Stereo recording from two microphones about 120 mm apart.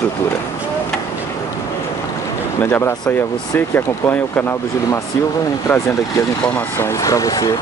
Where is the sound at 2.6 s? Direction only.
20° left (ahead or behind).